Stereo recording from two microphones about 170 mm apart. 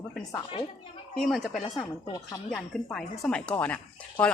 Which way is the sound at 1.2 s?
Centre (ahead or behind).